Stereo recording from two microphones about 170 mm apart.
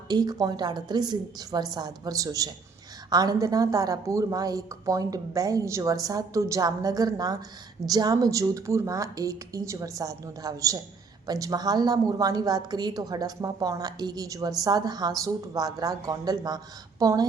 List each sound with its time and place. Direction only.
0.1 s a woman's voice: 25° right (ahead or behind)